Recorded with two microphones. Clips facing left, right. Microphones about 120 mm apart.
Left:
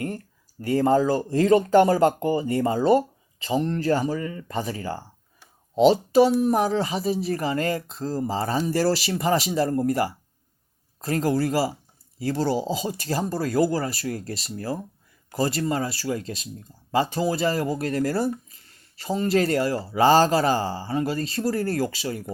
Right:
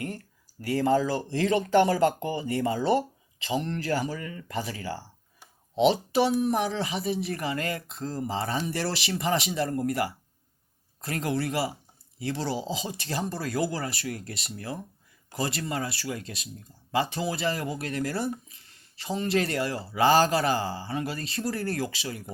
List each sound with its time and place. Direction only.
0.6 s speech: 35° left (ahead or behind)